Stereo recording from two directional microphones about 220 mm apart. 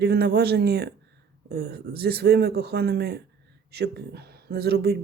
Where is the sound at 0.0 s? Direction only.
45° right (ahead or behind).